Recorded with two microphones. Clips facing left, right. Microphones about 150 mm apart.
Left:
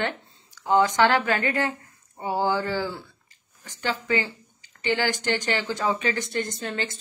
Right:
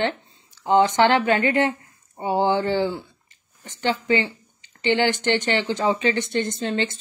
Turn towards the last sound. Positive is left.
turn(degrees=-25)  # may be behind; listen again after turning